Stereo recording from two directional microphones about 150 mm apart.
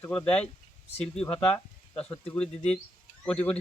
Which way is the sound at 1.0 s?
5° left (ahead or behind).